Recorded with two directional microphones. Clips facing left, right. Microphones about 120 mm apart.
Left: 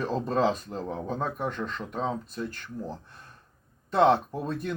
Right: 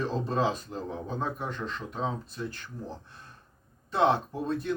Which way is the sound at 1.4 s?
50° left (ahead or behind).